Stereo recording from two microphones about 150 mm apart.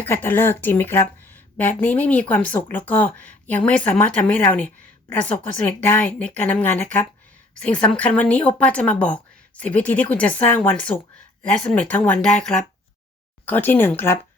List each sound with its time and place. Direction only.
0.0 s speech: 15° left (ahead or behind)